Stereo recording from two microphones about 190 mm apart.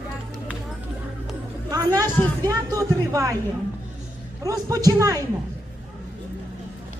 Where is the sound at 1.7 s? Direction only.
20° right (ahead or behind).